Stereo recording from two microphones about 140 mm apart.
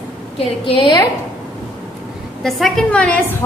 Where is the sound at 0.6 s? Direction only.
40° left (ahead or behind).